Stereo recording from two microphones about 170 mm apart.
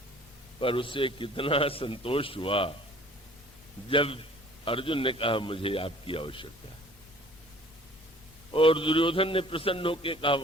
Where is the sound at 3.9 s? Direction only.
30° left (ahead or behind).